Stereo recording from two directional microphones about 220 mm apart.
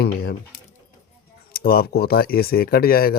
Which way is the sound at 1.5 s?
45° left (ahead or behind).